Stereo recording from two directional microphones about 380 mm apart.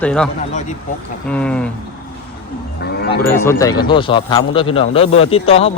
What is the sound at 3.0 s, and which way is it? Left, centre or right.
Speech, left.